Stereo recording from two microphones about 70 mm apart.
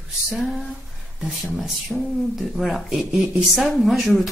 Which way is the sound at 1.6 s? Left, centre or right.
Centre.